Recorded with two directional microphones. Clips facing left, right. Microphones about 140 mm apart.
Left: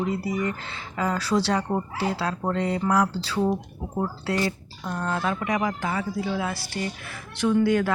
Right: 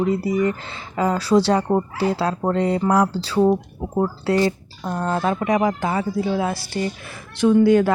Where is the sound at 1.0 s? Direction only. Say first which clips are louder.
Right 7 dB; 30° right (ahead or behind).